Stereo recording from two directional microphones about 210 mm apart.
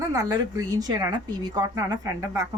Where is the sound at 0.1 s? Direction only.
15° right (ahead or behind).